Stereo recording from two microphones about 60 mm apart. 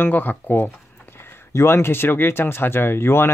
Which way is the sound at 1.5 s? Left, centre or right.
Left.